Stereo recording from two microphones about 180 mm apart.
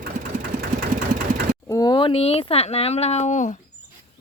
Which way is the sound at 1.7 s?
20° left (ahead or behind).